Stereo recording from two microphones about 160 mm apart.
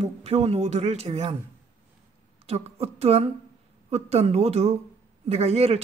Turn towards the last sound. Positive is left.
turn(degrees=-40)  # may be behind; listen again after turning